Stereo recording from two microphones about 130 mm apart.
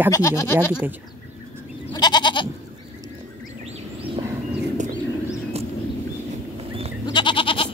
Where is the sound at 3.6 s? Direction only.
55° right (ahead or behind).